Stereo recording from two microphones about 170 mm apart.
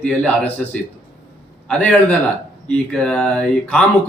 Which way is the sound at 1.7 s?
10° left (ahead or behind).